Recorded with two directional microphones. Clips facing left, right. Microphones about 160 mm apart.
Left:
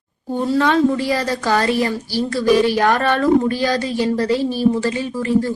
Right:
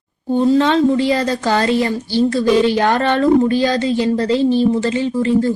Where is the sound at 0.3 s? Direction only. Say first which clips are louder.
Right 4 dB; 20° right (ahead or behind).